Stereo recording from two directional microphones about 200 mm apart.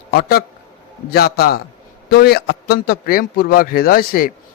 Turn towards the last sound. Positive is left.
turn(degrees=45)  # may be behind; listen again after turning